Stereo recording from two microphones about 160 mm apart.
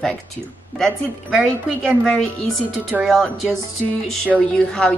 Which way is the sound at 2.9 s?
Centre (ahead or behind).